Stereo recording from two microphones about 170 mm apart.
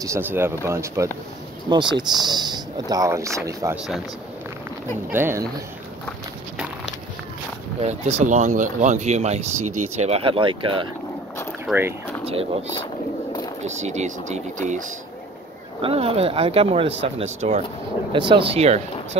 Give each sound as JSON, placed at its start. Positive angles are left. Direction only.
{"t": 0.0, "sound": "speech", "side_deg": -15}
{"t": 3.7, "sound": "speech", "side_deg": 0}
{"t": 5.1, "sound": "speech", "side_deg": -15}
{"t": 7.8, "sound": "speech", "side_deg": -45}
{"t": 11.6, "sound": "speech", "side_deg": -10}
{"t": 12.3, "sound": "speech", "side_deg": -35}
{"t": 13.7, "sound": "speech", "side_deg": -40}
{"t": 15.8, "sound": "speech", "side_deg": -35}
{"t": 18.1, "sound": "speech", "side_deg": -30}